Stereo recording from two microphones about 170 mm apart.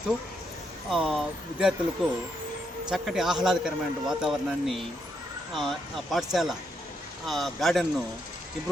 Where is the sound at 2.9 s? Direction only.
Centre (ahead or behind).